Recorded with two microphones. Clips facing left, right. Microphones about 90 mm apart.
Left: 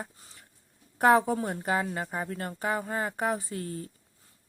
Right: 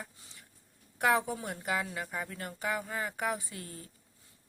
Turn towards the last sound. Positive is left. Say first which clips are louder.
# left 10 dB
turn(degrees=40)  # may be behind; listen again after turning